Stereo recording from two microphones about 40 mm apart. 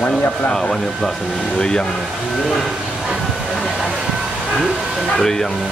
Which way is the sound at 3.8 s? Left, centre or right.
Centre.